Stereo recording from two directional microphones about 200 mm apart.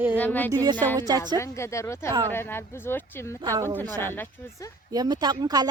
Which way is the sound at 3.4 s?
15° right (ahead or behind).